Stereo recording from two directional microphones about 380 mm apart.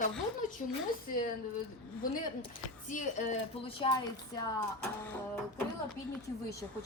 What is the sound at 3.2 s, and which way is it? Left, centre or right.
Speech, centre.